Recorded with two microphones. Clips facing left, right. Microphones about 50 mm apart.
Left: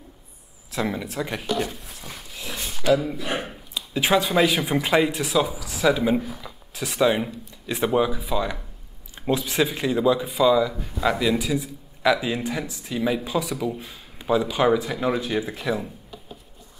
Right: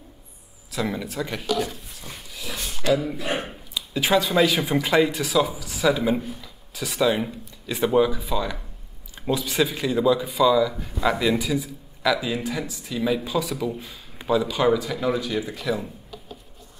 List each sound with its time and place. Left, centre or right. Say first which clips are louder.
0.8 s speech: even; centre
3.0 s speech: even; centre
3.7 s speech: even; centre
10.7 s speech: even; centre
13.5 s speech: even; centre